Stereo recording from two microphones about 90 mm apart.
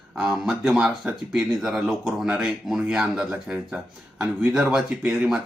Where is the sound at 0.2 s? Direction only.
Centre (ahead or behind).